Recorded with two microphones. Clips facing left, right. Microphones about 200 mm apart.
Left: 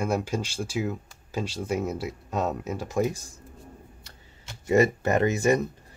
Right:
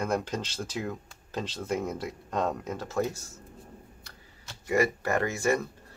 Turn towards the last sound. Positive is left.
turn(degrees=20)  # may be behind; listen again after turning